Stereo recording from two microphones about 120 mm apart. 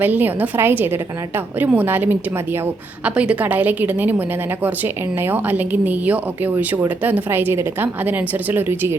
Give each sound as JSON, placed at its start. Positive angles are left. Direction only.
{"t": 0.0, "sound": "a woman's voice", "side_deg": -15}